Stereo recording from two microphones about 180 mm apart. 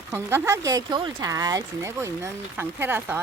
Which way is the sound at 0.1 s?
15° right (ahead or behind).